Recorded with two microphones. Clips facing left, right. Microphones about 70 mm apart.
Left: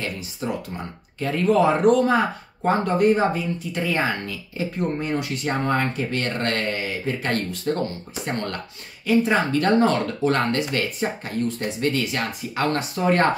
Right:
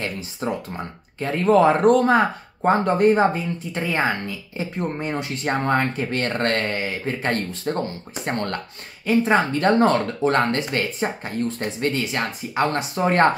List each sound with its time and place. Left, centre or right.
0.4 s speech: right